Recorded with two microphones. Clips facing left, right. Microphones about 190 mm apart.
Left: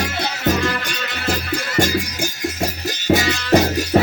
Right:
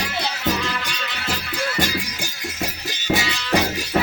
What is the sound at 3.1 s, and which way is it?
Music, 45° left (ahead or behind).